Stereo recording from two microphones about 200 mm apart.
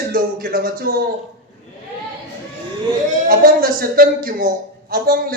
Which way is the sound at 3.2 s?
45° right (ahead or behind).